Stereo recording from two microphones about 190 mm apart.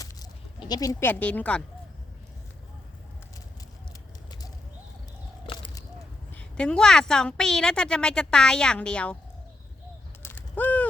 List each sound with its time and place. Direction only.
0.0 s sheep: 20° left (ahead or behind)
4.3 s bird: 20° left (ahead or behind)
5.5 s a sound: 25° left (ahead or behind)
6.3 s a woman's voice: 5° left (ahead or behind)
10.2 s bird: 10° left (ahead or behind)